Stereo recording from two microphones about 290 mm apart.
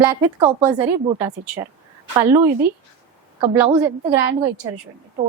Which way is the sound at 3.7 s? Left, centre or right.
Centre.